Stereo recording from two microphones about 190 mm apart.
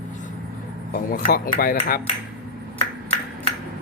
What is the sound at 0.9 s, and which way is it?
Speech, 45° left (ahead or behind).